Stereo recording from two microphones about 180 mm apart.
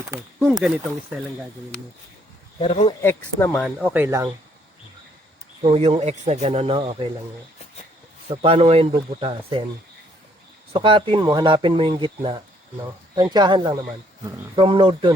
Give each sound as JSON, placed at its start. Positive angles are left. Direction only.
{"t": 0.1, "sound": "speech", "side_deg": -10}
{"t": 2.6, "sound": "speech", "side_deg": 35}
{"t": 3.0, "sound": "speech", "side_deg": 10}
{"t": 3.8, "sound": "speech", "side_deg": -10}
{"t": 5.6, "sound": "speech", "side_deg": -35}
{"t": 8.3, "sound": "speech", "side_deg": -30}
{"t": 10.7, "sound": "speech", "side_deg": -30}